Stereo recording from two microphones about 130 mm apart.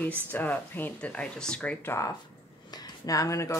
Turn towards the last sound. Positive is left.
turn(degrees=25)  # may be behind; listen again after turning